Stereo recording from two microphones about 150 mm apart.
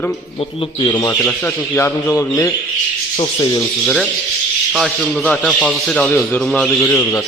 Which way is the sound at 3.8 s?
5° left (ahead or behind).